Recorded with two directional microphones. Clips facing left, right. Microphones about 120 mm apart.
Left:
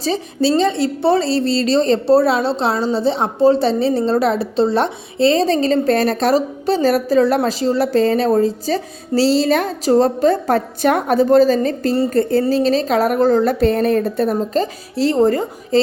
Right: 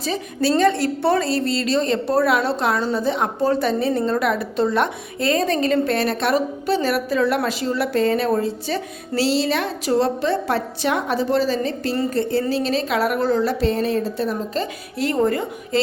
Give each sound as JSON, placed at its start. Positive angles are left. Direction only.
{"t": 0.0, "sound": "a woman's voice", "side_deg": 30}
{"t": 0.5, "sound": "a woman's voice", "side_deg": 20}